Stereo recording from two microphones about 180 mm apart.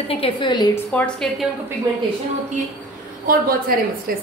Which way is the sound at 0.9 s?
5° left (ahead or behind).